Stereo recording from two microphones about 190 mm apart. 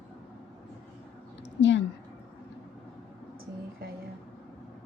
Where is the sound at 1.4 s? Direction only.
70° left (ahead or behind).